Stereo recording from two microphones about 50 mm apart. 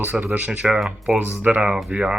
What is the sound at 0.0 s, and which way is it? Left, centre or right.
Speech, right.